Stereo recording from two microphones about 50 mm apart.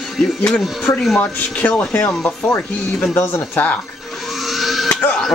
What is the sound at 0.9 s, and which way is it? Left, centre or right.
Speech, left.